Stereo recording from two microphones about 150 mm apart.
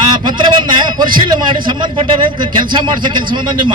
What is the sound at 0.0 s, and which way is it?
A man's voice, 30° right (ahead or behind).